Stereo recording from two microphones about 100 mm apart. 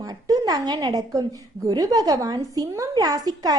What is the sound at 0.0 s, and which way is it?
A woman's voice, 40° right (ahead or behind).